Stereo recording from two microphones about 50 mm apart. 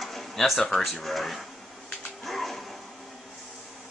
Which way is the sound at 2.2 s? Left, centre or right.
Centre.